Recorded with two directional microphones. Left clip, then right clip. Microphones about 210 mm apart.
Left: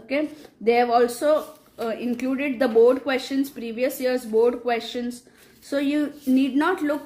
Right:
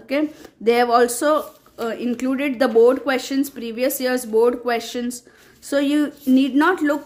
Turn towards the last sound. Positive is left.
turn(degrees=-25)  # may be behind; listen again after turning